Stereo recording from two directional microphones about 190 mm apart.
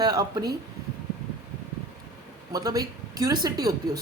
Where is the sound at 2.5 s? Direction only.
20° right (ahead or behind).